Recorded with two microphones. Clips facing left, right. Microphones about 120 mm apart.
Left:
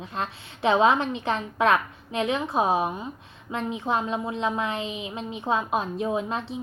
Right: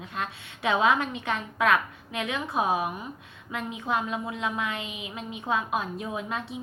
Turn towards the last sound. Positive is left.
turn(degrees=30)  # may be behind; listen again after turning